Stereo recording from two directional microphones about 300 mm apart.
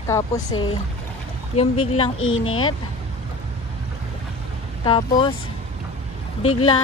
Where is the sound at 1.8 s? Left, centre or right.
Centre.